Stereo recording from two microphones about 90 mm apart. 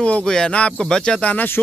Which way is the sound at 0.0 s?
10° left (ahead or behind).